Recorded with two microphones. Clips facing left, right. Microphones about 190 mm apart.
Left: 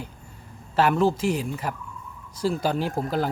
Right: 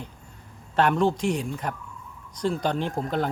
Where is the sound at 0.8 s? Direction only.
5° left (ahead or behind).